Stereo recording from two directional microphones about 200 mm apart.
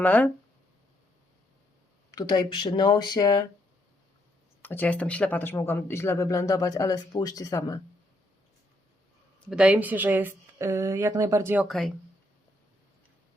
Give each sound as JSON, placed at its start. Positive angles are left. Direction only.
{"t": 0.0, "sound": "speech", "side_deg": 5}
{"t": 2.0, "sound": "speech", "side_deg": 20}
{"t": 4.6, "sound": "speech", "side_deg": 10}
{"t": 9.4, "sound": "a woman's voice", "side_deg": -5}
{"t": 11.6, "sound": "speech", "side_deg": 0}